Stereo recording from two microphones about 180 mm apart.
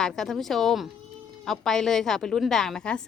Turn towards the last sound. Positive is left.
turn(degrees=5)  # may be behind; listen again after turning